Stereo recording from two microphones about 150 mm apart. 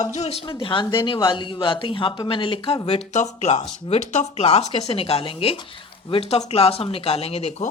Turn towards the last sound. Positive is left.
turn(degrees=45)  # may be behind; listen again after turning